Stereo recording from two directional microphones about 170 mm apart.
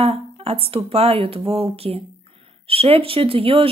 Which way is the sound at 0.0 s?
35° right (ahead or behind).